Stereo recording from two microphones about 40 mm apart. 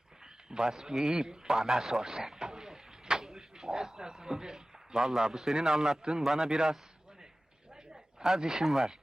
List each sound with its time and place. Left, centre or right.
0.5 s a man's voice: centre
1.1 s a sound: centre
5.6 s a man's voice: centre
8.2 s a man's voice: centre